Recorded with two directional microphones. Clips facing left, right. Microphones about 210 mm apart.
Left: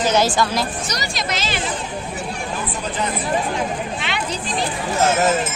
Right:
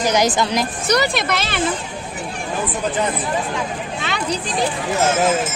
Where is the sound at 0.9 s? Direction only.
60° right (ahead or behind).